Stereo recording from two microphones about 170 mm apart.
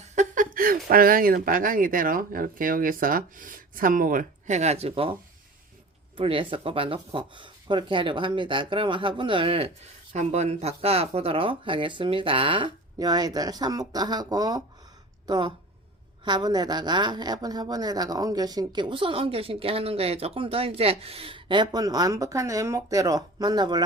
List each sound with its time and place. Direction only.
0.0 s speech: 45° right (ahead or behind)
6.1 s speech: 30° right (ahead or behind)